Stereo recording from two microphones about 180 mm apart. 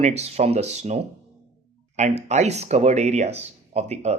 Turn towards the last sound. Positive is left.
turn(degrees=-35)  # may be behind; listen again after turning